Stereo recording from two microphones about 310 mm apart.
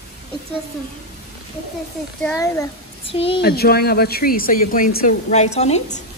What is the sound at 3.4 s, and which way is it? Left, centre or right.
Speech, left.